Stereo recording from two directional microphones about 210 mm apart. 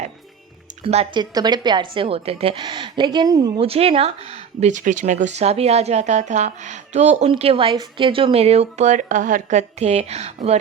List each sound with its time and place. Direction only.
0.9 s a woman's voice: 25° right (ahead or behind)